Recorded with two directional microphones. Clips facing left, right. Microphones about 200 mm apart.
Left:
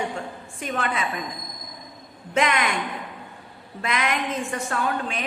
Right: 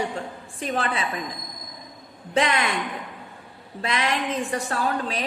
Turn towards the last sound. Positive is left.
turn(degrees=-35)  # may be behind; listen again after turning